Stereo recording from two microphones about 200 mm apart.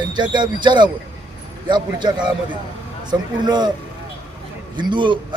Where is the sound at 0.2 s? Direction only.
20° right (ahead or behind).